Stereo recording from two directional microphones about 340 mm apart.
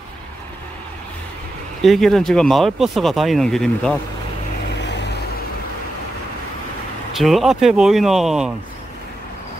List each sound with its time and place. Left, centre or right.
1.8 s speech: centre
4.8 s vehicle: left
7.2 s speech: centre